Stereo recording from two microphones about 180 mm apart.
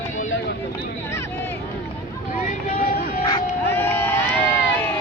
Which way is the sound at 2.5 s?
50° left (ahead or behind).